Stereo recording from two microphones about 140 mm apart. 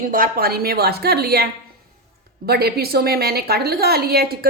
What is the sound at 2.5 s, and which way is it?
A woman's voice, 90° right.